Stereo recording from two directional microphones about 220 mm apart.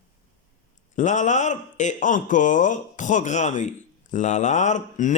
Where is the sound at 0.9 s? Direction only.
35° left (ahead or behind).